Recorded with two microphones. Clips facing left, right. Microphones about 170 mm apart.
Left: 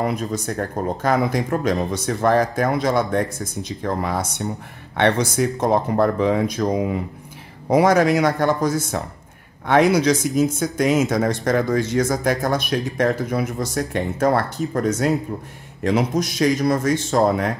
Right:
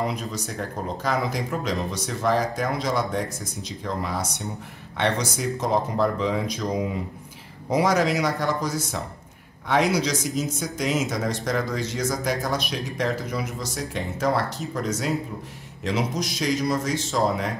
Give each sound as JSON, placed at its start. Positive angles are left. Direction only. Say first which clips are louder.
{"t": 0.0, "sound": "speech", "louder": "left 5 dB", "side_deg": 50}